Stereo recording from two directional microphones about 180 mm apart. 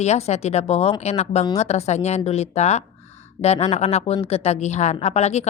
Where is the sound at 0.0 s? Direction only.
35° left (ahead or behind).